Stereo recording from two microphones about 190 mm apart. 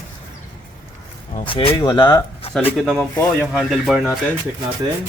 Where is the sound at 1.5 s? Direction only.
30° left (ahead or behind).